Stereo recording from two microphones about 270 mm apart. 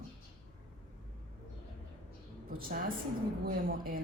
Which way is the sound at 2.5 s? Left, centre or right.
Right.